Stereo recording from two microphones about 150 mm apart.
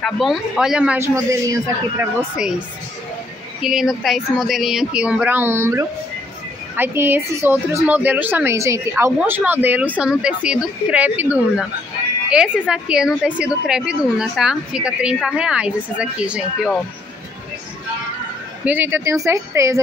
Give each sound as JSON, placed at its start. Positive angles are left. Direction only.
{"t": 0.0, "sound": "a woman's voice", "side_deg": 0}
{"t": 0.9, "sound": "a man's voice", "side_deg": -20}
{"t": 3.6, "sound": "a woman's voice", "side_deg": 0}
{"t": 18.7, "sound": "a woman's voice", "side_deg": -15}